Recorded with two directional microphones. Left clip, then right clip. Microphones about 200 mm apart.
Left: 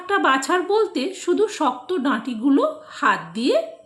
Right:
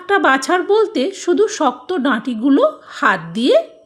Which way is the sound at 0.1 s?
40° right (ahead or behind).